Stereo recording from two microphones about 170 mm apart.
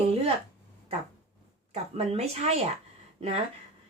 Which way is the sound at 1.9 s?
35° right (ahead or behind).